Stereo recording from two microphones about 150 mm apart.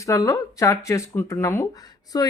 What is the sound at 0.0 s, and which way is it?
Speech, 20° left (ahead or behind).